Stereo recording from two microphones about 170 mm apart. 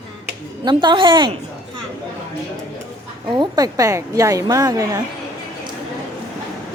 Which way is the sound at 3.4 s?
20° right (ahead or behind).